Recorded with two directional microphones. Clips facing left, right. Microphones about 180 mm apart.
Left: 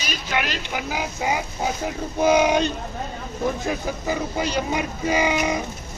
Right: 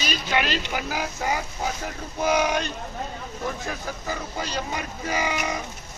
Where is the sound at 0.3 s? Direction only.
10° left (ahead or behind).